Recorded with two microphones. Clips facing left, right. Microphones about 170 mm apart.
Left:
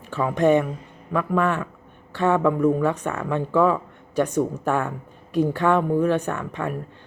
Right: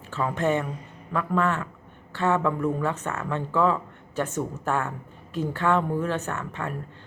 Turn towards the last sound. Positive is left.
turn(degrees=15)  # may be behind; listen again after turning